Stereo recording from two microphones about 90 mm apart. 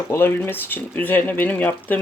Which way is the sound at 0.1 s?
25° left (ahead or behind).